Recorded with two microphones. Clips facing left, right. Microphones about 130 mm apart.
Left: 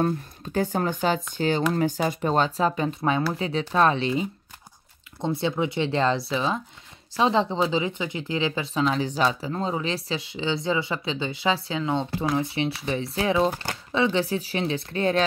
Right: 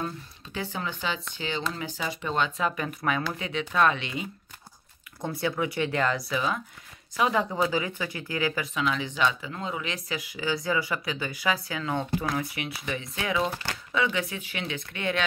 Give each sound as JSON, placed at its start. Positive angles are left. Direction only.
{"t": 0.0, "sound": "speech", "side_deg": 45}